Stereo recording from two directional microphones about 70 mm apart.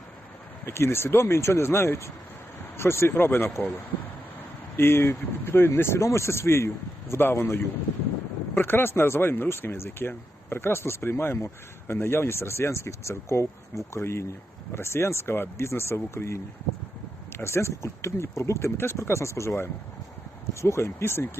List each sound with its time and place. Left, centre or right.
0.6 s speech: left
4.8 s speech: left